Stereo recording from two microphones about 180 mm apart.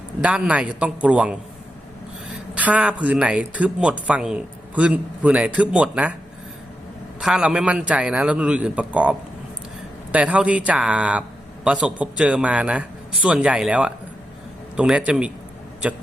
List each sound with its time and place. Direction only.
0.2 s a man's voice: 5° right (ahead or behind)
2.6 s a man's voice: 10° right (ahead or behind)
7.2 s a man's voice: 5° right (ahead or behind)